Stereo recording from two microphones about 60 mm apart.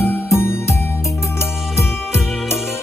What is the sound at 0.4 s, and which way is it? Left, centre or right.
Music, left.